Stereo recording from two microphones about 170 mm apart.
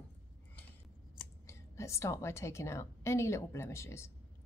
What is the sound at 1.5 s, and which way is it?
A woman's voice, 15° left (ahead or behind).